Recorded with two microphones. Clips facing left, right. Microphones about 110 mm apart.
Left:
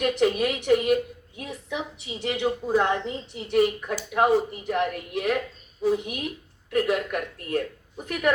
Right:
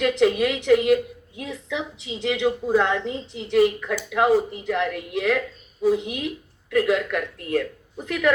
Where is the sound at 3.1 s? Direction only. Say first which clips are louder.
Right 3 dB; 25° right (ahead or behind).